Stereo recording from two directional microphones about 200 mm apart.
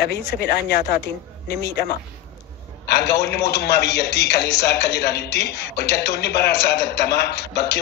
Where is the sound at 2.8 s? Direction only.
55° left (ahead or behind).